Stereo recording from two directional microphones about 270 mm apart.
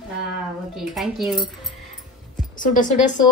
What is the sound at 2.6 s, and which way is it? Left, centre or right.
Speech, left.